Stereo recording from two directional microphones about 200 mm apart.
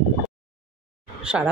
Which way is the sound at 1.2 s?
5° right (ahead or behind).